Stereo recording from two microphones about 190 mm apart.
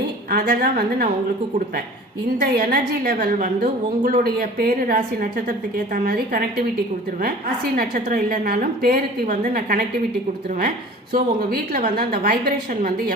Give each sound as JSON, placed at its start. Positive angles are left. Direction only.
{"t": 0.3, "sound": "a woman's voice", "side_deg": -50}
{"t": 2.4, "sound": "a woman's voice", "side_deg": -50}
{"t": 7.8, "sound": "a woman's voice", "side_deg": -50}
{"t": 11.1, "sound": "a woman's voice", "side_deg": -50}